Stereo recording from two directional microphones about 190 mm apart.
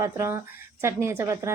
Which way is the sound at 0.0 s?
15° right (ahead or behind).